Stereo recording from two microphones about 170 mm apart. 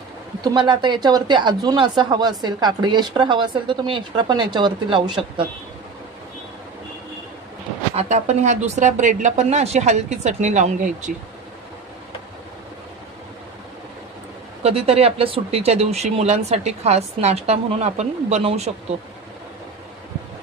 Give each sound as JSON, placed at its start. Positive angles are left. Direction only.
{"t": 0.4, "sound": "speech", "side_deg": -25}
{"t": 7.9, "sound": "speech", "side_deg": -40}
{"t": 14.6, "sound": "speech", "side_deg": -35}